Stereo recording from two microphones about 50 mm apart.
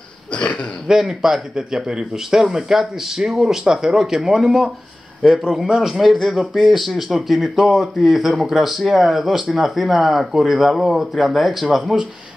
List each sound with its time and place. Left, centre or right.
0.3 s speech: left
0.8 s a man's voice: centre